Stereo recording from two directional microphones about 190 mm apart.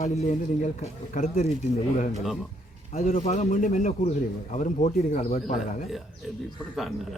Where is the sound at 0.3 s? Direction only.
35° left (ahead or behind).